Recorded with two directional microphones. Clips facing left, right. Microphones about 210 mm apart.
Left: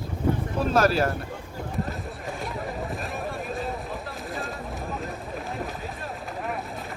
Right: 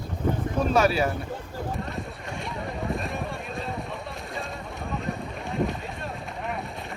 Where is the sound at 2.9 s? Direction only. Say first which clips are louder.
Right 1 dB; centre (ahead or behind).